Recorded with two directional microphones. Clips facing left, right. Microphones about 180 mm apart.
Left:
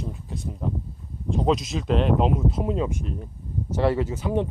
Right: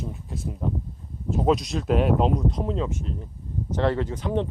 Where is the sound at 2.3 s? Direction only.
5° left (ahead or behind).